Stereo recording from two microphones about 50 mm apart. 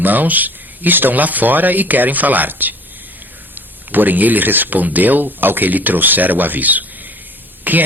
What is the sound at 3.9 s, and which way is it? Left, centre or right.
A man's voice, right.